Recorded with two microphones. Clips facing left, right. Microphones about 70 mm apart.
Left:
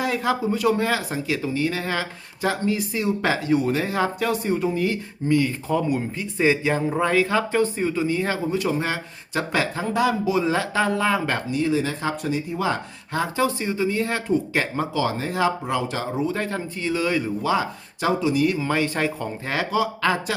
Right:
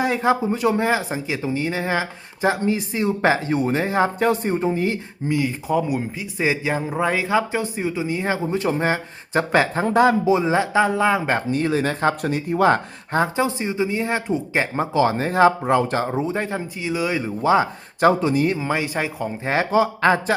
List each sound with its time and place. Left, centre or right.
0.0 s speech: right
5.3 s speech: centre
11.5 s speech: right
13.1 s speech: right
14.9 s speech: right
16.1 s speech: right
18.0 s speech: right
18.4 s speech: right
18.7 s speech: centre
19.5 s speech: right